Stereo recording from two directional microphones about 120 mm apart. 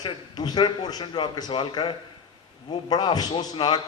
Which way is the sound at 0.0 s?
35° left (ahead or behind).